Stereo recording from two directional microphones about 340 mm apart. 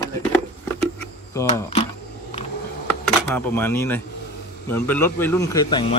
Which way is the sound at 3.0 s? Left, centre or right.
Centre.